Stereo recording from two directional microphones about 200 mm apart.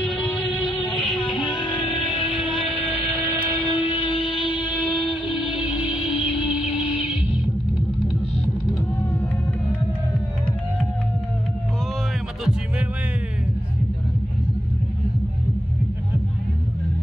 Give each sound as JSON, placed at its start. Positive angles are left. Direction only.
{"t": 0.2, "sound": "music", "side_deg": 25}
{"t": 1.0, "sound": "music", "side_deg": 0}
{"t": 1.3, "sound": "music", "side_deg": 25}
{"t": 1.8, "sound": "music", "side_deg": 0}
{"t": 3.6, "sound": "music", "side_deg": -10}
{"t": 3.9, "sound": "music", "side_deg": 25}
{"t": 4.6, "sound": "music", "side_deg": -10}
{"t": 5.1, "sound": "music", "side_deg": 25}
{"t": 6.4, "sound": "music", "side_deg": -5}